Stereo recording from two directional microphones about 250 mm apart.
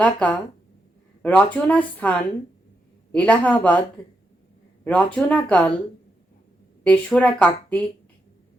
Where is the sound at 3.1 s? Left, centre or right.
Centre.